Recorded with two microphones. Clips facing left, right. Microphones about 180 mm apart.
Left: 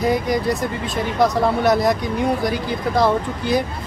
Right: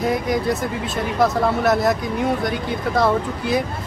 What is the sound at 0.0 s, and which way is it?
Speech, centre (ahead or behind).